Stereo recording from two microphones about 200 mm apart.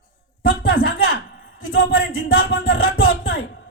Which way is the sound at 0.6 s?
50° left (ahead or behind).